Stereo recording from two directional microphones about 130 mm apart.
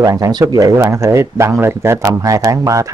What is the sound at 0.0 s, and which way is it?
Speech, 25° right (ahead or behind).